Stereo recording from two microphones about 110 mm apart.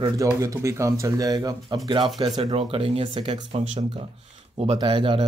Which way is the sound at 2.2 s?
45° right (ahead or behind).